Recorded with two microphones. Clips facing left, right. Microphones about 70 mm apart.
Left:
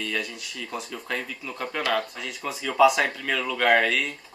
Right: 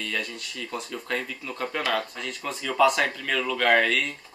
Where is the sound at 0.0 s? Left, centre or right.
Centre.